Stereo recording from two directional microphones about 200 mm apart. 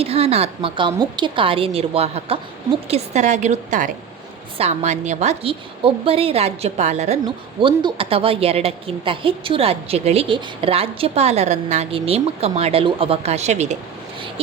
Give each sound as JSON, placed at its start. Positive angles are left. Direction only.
{"t": 0.0, "sound": "a woman's voice", "side_deg": -30}
{"t": 7.6, "sound": "a woman's voice", "side_deg": -25}